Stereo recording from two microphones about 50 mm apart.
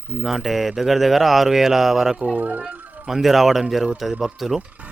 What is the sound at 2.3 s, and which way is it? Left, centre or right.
Speech, right.